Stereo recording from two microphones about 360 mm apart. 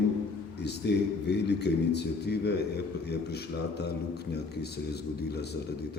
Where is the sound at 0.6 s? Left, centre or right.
Left.